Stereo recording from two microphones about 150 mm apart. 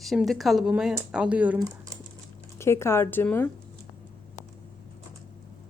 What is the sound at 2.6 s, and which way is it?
Speech, 15° left (ahead or behind).